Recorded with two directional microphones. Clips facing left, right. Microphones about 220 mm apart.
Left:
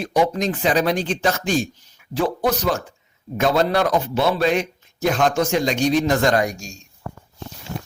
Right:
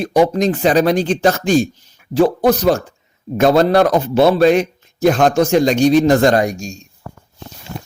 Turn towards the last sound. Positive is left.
turn(degrees=-30)  # may be behind; listen again after turning